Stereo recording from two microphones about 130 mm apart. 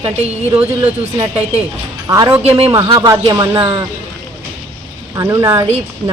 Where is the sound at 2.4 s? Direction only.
50° right (ahead or behind).